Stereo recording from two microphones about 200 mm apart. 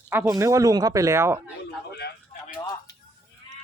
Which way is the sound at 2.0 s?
55° left (ahead or behind).